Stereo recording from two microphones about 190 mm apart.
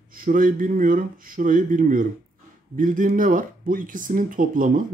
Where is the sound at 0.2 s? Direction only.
45° right (ahead or behind).